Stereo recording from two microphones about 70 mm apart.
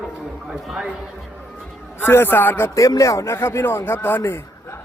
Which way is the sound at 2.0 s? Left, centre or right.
Left.